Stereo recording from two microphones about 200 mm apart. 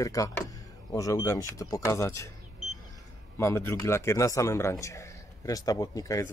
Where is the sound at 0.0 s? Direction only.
15° left (ahead or behind).